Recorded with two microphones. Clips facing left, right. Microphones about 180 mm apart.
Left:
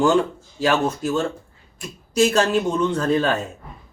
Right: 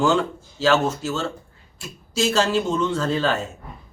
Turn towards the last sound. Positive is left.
turn(degrees=15)  # may be behind; listen again after turning